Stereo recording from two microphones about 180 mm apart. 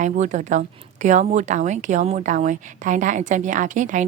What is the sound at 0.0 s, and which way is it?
Speech, 40° right (ahead or behind).